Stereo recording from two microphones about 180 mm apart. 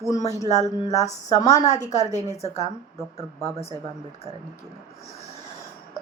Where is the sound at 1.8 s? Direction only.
40° left (ahead or behind).